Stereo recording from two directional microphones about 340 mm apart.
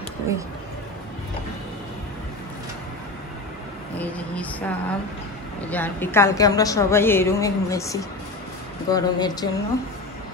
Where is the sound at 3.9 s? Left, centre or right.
Centre.